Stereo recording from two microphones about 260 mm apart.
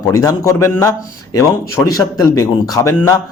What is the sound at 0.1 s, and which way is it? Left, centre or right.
Speech, centre.